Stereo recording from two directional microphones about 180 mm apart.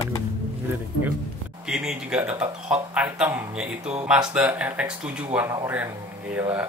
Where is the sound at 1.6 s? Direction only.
5° right (ahead or behind).